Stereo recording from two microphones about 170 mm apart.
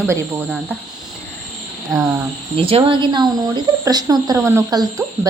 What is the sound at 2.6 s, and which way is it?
A woman's voice, 30° right (ahead or behind).